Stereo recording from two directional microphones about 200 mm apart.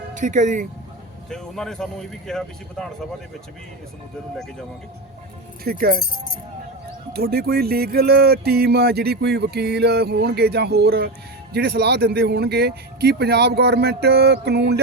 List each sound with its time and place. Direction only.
0.1 s speech: 40° right (ahead or behind)
1.3 s speech: 5° left (ahead or behind)
5.6 s music: 50° right (ahead or behind)
7.1 s music: 50° right (ahead or behind)